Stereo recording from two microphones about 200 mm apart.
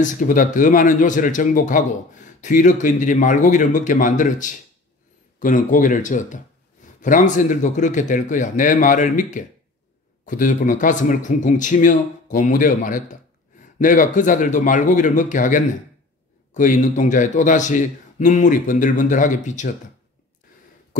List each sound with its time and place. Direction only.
0.0 s speech: 40° left (ahead or behind)